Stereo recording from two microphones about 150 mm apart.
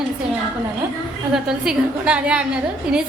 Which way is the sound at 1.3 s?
5° right (ahead or behind).